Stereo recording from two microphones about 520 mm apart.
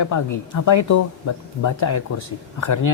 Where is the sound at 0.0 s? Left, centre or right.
Left.